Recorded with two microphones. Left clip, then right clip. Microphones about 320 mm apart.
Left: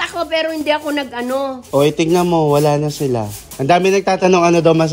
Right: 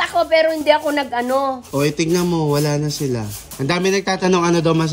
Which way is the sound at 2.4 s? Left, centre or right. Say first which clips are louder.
Left 6 dB; centre.